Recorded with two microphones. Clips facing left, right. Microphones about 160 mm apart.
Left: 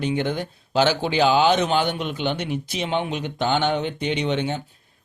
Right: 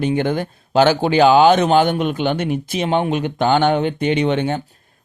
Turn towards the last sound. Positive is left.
turn(degrees=-55)  # may be behind; listen again after turning